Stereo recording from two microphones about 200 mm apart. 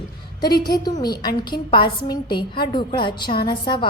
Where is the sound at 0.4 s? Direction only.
20° left (ahead or behind).